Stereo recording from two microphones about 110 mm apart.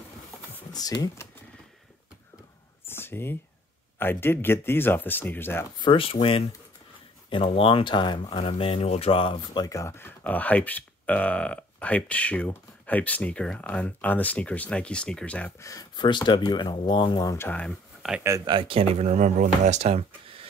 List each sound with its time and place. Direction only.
0.7 s speech: 35° left (ahead or behind)
2.9 s whispering: 20° left (ahead or behind)
4.0 s speech: 20° left (ahead or behind)
5.8 s speech: 50° left (ahead or behind)
7.2 s speech: 50° left (ahead or behind)
9.6 s speech: 30° left (ahead or behind); by 15.5 s 10° left (ahead or behind)
15.6 s speech: 30° left (ahead or behind)
16.0 s speech: 45° left (ahead or behind)
17.5 s speech: 10° left (ahead or behind)
18.0 s speech: 5° right (ahead or behind)
18.4 s speech: 45° right (ahead or behind); by 20.1 s 75° right (ahead or behind)